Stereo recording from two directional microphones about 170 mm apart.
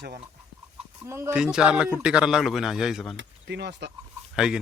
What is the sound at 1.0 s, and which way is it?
Speech, 15° right (ahead or behind).